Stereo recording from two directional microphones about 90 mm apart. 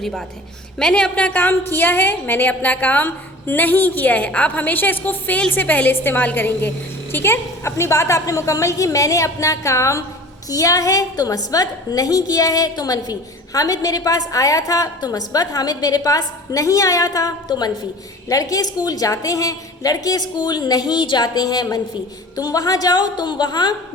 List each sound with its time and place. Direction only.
0.0 s a woman's voice: centre (ahead or behind); by 23.7 s 50° left (ahead or behind)